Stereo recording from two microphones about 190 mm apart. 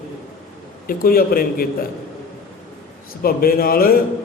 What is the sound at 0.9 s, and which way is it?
Speech, 50° left (ahead or behind).